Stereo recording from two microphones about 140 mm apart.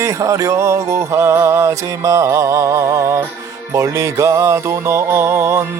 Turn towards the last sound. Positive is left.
turn(degrees=-20)  # may be behind; listen again after turning